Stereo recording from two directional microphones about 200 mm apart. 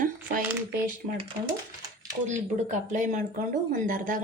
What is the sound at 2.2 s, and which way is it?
Speech, 35° right (ahead or behind).